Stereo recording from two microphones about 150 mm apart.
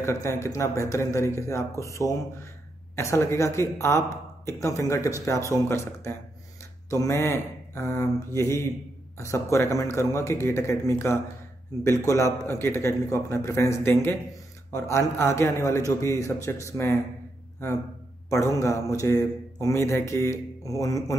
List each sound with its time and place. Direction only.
0.0 s a man's voice: 20° left (ahead or behind)
18.3 s a man's voice: 20° left (ahead or behind)